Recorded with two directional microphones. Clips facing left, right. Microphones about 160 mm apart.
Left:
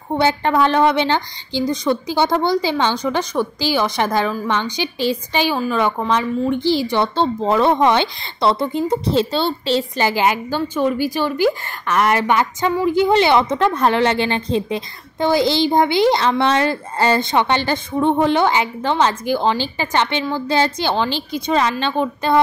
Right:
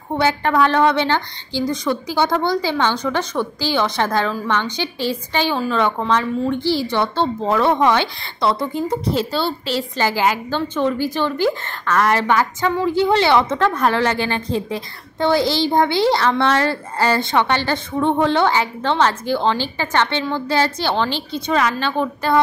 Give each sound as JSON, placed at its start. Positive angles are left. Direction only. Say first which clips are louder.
{"t": 0.2, "sound": "a woman's voice", "louder": "even", "side_deg": 25}